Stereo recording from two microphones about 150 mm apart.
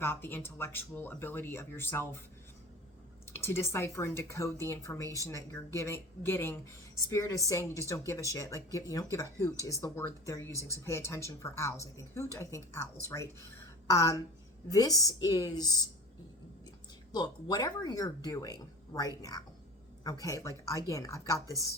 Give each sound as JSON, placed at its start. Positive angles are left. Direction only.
{"t": 0.0, "sound": "speech", "side_deg": 15}
{"t": 3.3, "sound": "speech", "side_deg": 15}
{"t": 17.1, "sound": "speech", "side_deg": 25}
{"t": 20.1, "sound": "speech", "side_deg": 25}